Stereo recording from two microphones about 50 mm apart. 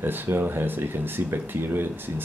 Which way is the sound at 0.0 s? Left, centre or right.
Right.